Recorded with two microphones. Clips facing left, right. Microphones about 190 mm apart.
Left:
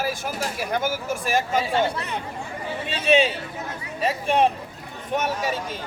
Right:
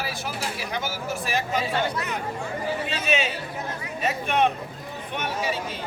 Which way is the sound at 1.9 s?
30° left (ahead or behind).